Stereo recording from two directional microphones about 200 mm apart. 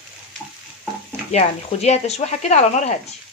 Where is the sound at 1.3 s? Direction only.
35° left (ahead or behind).